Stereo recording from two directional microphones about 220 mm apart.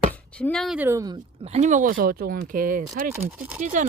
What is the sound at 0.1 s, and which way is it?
Speech, 5° left (ahead or behind).